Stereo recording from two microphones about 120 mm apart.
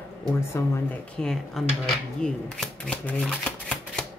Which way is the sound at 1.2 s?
Centre (ahead or behind).